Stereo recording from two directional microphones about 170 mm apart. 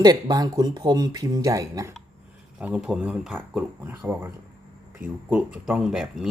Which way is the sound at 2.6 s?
5° right (ahead or behind).